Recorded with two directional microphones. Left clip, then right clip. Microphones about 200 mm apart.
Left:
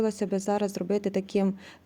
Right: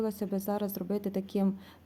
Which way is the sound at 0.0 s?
40° left (ahead or behind).